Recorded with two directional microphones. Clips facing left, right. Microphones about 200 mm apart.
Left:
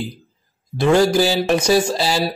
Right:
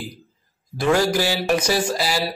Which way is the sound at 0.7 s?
25° left (ahead or behind).